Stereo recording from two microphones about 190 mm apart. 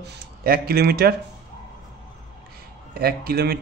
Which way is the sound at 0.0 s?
50° right (ahead or behind).